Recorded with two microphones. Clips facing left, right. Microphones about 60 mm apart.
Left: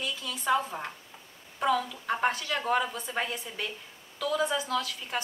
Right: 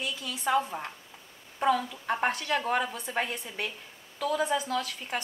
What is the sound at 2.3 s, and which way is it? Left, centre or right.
Speech, right.